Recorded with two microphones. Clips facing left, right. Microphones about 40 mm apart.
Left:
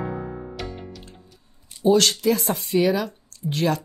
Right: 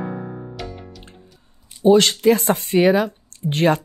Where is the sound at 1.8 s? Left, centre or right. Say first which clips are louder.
Right 4 dB; right.